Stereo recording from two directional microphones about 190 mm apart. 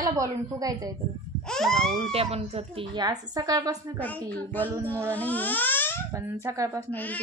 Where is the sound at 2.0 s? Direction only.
30° right (ahead or behind).